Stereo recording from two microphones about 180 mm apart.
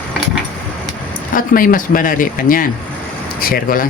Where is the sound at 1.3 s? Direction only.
50° left (ahead or behind).